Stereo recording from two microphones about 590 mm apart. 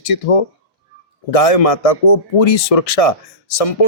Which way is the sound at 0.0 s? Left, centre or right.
Left.